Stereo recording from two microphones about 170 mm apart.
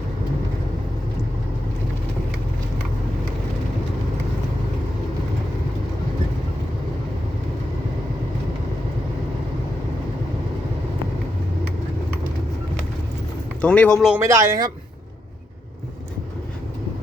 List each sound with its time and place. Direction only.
13.6 s a man's voice: 5° left (ahead or behind)
14.2 s speech: 15° right (ahead or behind)